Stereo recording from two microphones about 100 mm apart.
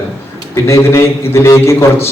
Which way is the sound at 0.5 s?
30° left (ahead or behind).